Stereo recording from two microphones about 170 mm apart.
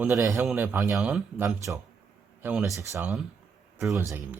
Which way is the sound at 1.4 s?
20° right (ahead or behind).